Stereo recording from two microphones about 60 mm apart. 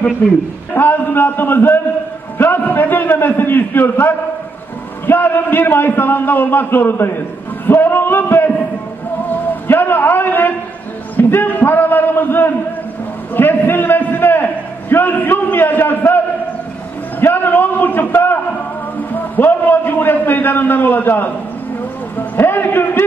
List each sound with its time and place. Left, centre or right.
0.7 s a man's voice: left
9.7 s a man's voice: left
11.1 s a sound: left
13.3 s a man's voice: left
17.2 s a man's voice: left
22.4 s a man's voice: left